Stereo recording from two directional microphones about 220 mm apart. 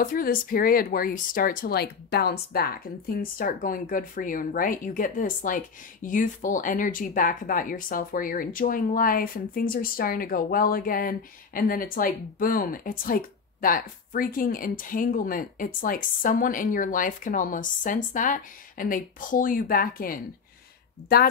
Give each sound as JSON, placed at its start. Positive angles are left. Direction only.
{"t": 0.0, "sound": "speech", "side_deg": 40}